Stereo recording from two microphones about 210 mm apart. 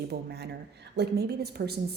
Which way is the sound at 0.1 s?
50° right (ahead or behind).